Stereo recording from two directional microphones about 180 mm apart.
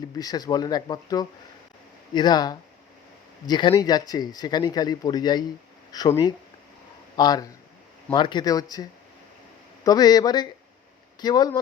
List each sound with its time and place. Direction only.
0.1 s speech: 20° left (ahead or behind)
9.8 s speech: 20° left (ahead or behind)